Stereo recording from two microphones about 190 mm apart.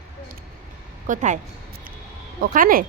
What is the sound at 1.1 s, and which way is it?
Speech, 40° right (ahead or behind).